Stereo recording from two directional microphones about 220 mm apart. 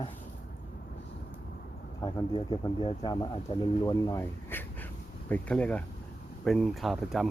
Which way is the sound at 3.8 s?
15° left (ahead or behind).